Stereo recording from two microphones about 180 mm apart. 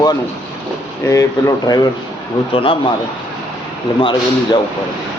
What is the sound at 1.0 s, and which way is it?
A man's voice, 15° left (ahead or behind).